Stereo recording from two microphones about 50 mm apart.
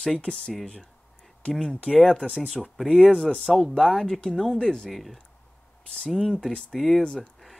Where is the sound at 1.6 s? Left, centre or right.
Centre.